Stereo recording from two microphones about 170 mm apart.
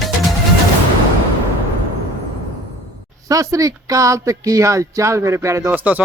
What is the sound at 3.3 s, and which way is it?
Speech, 20° right (ahead or behind).